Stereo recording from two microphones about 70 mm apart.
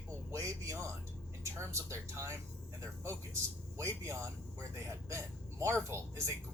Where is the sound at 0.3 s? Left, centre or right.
Right.